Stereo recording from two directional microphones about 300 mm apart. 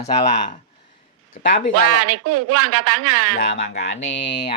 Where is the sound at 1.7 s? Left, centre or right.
Right.